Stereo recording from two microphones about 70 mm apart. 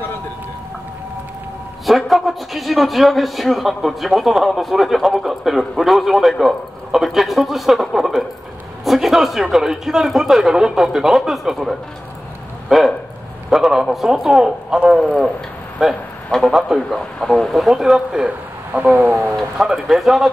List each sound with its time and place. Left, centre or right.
1.9 s a man's voice: centre
18.7 s speech: right
19.3 s a man's voice: centre